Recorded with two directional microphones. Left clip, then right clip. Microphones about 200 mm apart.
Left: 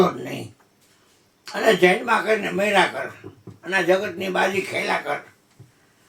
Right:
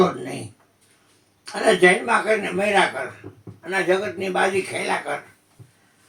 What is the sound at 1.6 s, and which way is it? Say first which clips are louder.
Speech: right 1 dB; 5° left (ahead or behind).